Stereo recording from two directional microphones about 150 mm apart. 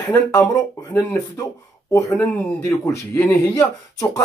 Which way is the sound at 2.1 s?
10° left (ahead or behind).